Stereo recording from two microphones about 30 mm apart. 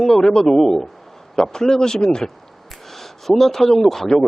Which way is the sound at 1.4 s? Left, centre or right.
Left.